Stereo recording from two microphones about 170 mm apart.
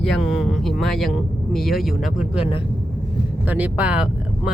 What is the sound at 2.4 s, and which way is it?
Speech, 30° left (ahead or behind).